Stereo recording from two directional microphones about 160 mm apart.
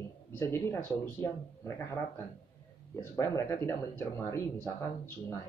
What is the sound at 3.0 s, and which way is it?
Speech, 20° left (ahead or behind).